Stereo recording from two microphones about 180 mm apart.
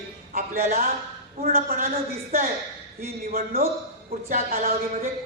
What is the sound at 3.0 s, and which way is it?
Speech, 55° right (ahead or behind).